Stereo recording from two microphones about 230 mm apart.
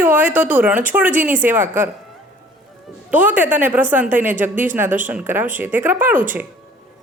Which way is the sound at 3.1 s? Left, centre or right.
Centre.